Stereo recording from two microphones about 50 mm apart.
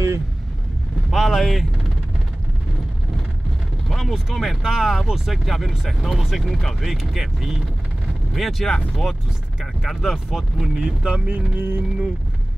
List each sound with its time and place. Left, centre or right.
1.1 s vehicle: centre
4.1 s speech: centre
9.8 s speech: centre
11.1 s music: right